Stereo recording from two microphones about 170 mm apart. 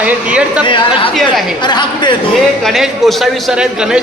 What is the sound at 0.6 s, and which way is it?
Speech, 30° left (ahead or behind).